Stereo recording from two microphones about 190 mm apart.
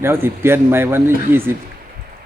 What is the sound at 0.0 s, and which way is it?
Speech, 10° right (ahead or behind).